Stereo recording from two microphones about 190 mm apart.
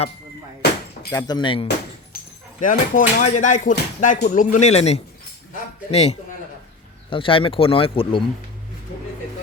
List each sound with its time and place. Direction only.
1.1 s speech: 20° left (ahead or behind)
2.1 s dog: 50° left (ahead or behind)
2.6 s a man's voice: 45° left (ahead or behind); by 8.2 s 30° left (ahead or behind)